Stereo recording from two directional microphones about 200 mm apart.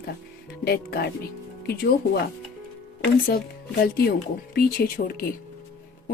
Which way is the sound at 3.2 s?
50° left (ahead or behind).